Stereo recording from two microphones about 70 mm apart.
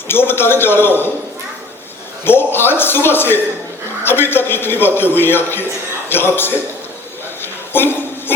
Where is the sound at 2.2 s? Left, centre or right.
Left.